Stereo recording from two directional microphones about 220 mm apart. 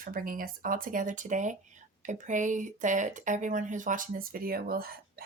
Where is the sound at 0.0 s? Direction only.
40° right (ahead or behind).